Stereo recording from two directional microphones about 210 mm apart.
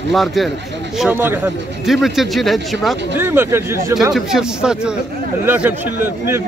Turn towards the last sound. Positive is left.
turn(degrees=-10)  # may be behind; listen again after turning